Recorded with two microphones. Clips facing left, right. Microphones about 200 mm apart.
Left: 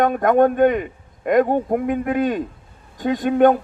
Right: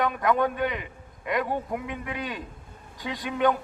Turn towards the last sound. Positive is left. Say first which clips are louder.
# left 10 dB
turn(degrees=50)  # may be behind; listen again after turning